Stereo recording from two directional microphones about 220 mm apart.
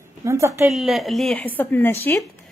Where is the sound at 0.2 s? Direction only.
15° right (ahead or behind).